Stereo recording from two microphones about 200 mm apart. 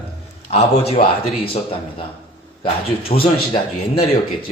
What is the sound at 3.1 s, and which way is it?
Speech, 25° left (ahead or behind).